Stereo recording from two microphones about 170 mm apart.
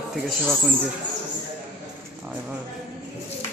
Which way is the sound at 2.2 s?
10° right (ahead or behind).